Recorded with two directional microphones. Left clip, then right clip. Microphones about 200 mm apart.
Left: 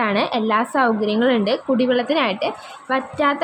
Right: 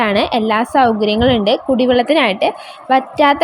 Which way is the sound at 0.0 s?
15° right (ahead or behind).